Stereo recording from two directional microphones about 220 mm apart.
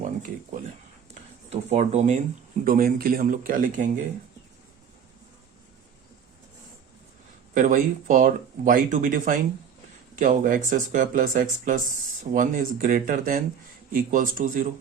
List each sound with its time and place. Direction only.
1.5 s speech: 30° right (ahead or behind)
7.5 s speech: 35° right (ahead or behind)